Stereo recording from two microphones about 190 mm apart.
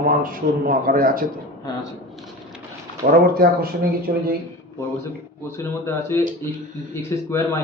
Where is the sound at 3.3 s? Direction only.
50° right (ahead or behind).